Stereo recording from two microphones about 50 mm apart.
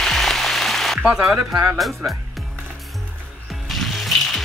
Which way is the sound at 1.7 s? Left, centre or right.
Centre.